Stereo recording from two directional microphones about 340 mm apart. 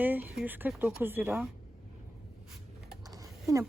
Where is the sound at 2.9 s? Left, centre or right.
Centre.